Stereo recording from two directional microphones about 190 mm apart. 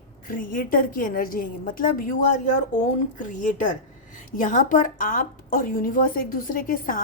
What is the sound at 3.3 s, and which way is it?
A woman's voice, 40° left (ahead or behind).